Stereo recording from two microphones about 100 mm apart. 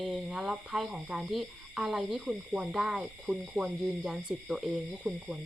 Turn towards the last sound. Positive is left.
turn(degrees=-10)  # may be behind; listen again after turning